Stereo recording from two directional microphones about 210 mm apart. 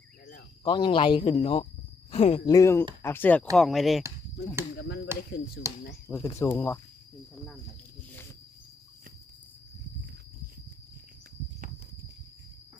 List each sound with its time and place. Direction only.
0.6 s speech: 20° left (ahead or behind)
2.5 s speech: 15° left (ahead or behind)
5.1 s a sound: 10° right (ahead or behind)
5.7 s speech: 15° right (ahead or behind)
6.1 s speech: 10° left (ahead or behind)